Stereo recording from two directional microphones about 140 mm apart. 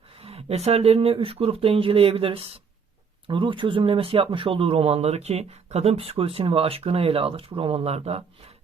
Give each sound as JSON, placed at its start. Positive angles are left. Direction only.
{"t": 0.2, "sound": "speech", "side_deg": -45}